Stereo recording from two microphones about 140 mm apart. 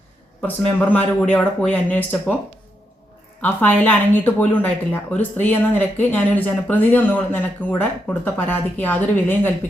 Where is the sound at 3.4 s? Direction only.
10° left (ahead or behind).